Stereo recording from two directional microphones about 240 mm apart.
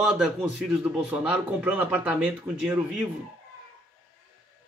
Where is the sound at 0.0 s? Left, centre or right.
Centre.